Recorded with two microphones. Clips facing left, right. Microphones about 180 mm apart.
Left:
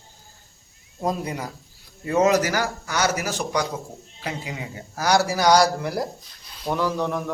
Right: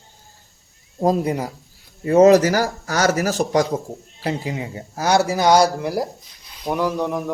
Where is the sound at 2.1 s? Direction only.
40° right (ahead or behind).